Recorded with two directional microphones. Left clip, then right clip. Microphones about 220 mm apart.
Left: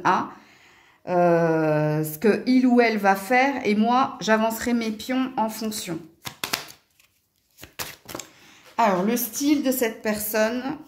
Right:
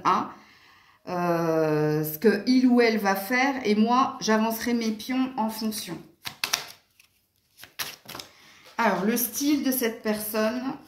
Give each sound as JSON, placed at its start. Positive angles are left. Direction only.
{"t": 1.0, "sound": "a woman's voice", "side_deg": 40}
{"t": 6.2, "sound": "a sound", "side_deg": 25}
{"t": 8.7, "sound": "a woman's voice", "side_deg": 45}